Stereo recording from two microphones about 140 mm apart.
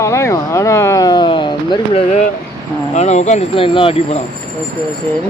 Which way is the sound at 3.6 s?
40° left (ahead or behind).